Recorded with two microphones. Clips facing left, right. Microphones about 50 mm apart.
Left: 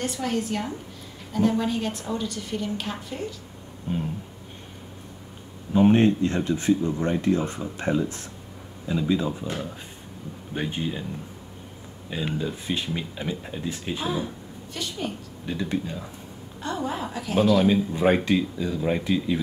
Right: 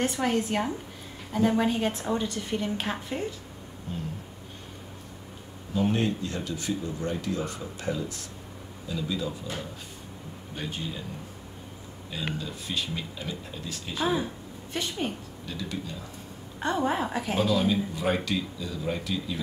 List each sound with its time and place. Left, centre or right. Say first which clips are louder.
0.0 s a woman's voice: right 1 dB; right
3.9 s speech: left 8 dB; left
5.7 s speech: left 8 dB; left
12.4 s speech: left 5 dB; left
14.7 s a woman's voice: right 1 dB; right
15.4 s speech: left 7 dB; left
16.6 s a woman's voice: right 3 dB; right
17.4 s speech: left 6 dB; left